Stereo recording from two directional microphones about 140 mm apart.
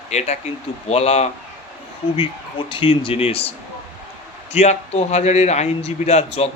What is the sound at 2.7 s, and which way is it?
Speech, 40° left (ahead or behind).